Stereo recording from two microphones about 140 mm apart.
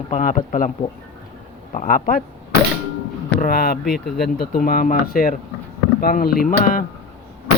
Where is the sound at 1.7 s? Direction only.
70° left (ahead or behind).